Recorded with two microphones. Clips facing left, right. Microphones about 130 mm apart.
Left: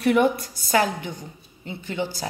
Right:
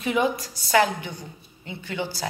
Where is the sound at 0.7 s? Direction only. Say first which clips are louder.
Right 1 dB; 35° left (ahead or behind).